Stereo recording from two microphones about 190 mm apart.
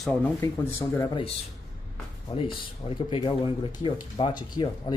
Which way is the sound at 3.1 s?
25° left (ahead or behind).